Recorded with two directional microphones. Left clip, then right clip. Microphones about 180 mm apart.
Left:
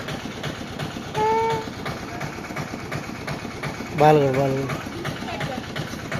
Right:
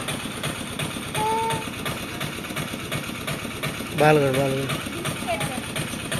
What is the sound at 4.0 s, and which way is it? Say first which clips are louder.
Speech: left 2 dB; 15° left (ahead or behind).